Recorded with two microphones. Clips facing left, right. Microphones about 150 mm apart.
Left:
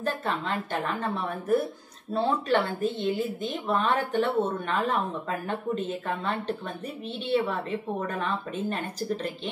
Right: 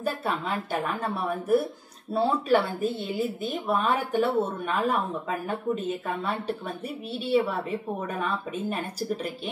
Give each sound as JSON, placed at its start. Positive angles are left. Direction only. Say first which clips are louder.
{"t": 0.0, "sound": "a woman's voice", "louder": "right 1 dB", "side_deg": -10}
{"t": 8.1, "sound": "a woman's voice", "louder": "right 1 dB", "side_deg": -10}